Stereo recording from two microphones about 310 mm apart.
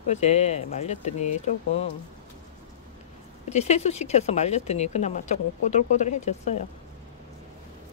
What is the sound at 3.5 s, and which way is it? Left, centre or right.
Speech, left.